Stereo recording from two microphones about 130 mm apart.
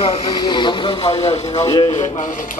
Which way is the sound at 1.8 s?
75° left (ahead or behind).